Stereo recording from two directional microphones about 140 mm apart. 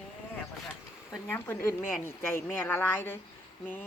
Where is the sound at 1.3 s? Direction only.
15° left (ahead or behind).